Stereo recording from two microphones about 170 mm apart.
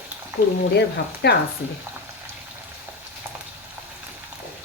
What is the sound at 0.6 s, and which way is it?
Speech, 75° left (ahead or behind).